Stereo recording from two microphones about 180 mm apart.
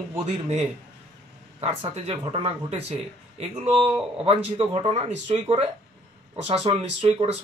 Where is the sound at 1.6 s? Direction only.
35° right (ahead or behind).